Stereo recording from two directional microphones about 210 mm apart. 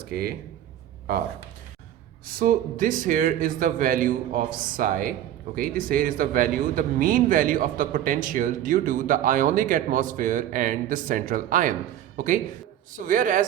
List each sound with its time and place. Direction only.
0.0 s speech: 45° right (ahead or behind)
2.2 s a man's voice: 40° right (ahead or behind)